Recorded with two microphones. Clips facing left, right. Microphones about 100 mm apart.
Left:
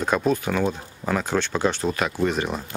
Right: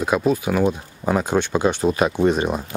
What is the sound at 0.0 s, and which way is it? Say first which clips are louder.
Speech: right 3 dB; 5° right (ahead or behind).